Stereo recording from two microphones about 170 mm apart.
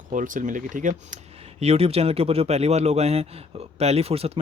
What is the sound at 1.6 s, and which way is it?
Speech, 35° right (ahead or behind).